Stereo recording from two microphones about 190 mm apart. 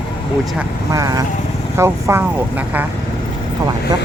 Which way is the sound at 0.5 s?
15° right (ahead or behind).